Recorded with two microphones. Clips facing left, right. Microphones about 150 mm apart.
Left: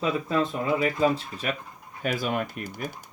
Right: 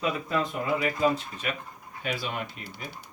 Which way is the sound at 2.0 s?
45° left (ahead or behind).